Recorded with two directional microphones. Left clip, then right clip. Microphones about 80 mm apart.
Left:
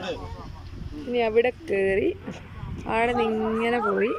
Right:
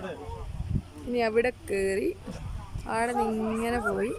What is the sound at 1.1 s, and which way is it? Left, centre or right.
Speech, centre.